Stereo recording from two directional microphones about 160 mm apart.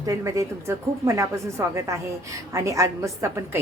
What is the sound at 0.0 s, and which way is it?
A woman's voice, 20° right (ahead or behind).